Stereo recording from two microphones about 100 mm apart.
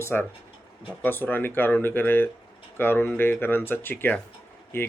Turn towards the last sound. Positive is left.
turn(degrees=25)  # may be behind; listen again after turning